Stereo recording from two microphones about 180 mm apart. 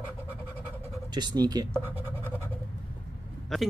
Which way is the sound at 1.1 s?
20° right (ahead or behind).